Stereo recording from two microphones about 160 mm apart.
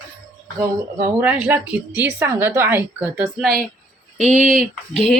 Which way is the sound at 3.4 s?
65° right (ahead or behind).